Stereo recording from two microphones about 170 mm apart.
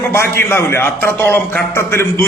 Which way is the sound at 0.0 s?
15° left (ahead or behind).